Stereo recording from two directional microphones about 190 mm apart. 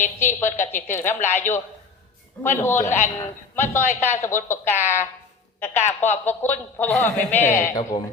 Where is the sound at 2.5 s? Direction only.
10° left (ahead or behind).